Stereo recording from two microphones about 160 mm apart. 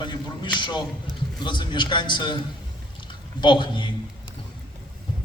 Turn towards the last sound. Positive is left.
turn(degrees=30)  # may be behind; listen again after turning